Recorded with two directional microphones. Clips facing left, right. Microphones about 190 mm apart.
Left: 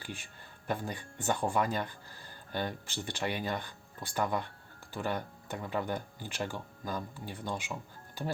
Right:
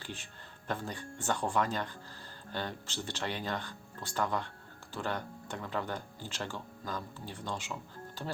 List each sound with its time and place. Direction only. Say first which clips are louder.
0.0 s speech: left 1 dB; 10° left (ahead or behind)